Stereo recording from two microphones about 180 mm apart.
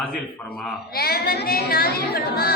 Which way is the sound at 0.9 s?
60° left (ahead or behind).